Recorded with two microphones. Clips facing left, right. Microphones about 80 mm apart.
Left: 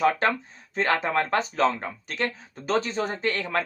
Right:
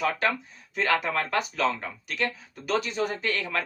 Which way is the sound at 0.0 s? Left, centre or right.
Left.